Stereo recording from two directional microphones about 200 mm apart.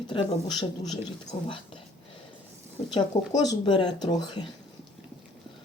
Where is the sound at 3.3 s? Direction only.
20° left (ahead or behind).